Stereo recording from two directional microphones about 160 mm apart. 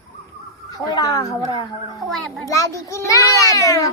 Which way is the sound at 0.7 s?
25° left (ahead or behind).